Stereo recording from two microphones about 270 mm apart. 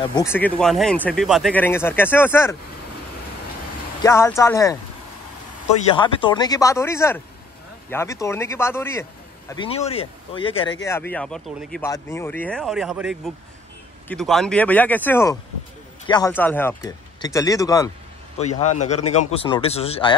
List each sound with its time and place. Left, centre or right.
0.1 s speech: centre
4.0 s speech: centre
5.9 s speech: centre
9.5 s speech: centre
10.9 s speech: centre
18.4 s speech: left